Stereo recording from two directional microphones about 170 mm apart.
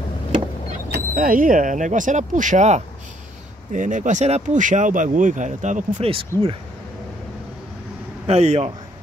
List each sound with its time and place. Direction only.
0.9 s speech: 55° right (ahead or behind)
8.3 s a man's voice: 40° right (ahead or behind)